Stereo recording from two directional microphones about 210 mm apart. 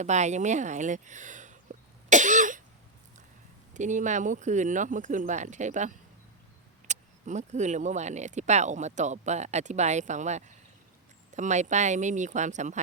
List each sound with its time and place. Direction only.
0.0 s speech: 35° right (ahead or behind)
2.0 s cough: 35° right (ahead or behind)
3.8 s speech: 35° right (ahead or behind)